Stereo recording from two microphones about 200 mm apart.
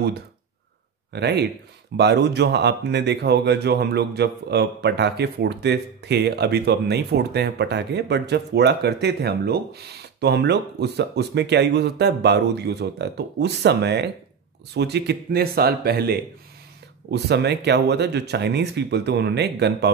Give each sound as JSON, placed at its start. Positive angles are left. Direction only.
{"t": 1.1, "sound": "speech", "side_deg": -55}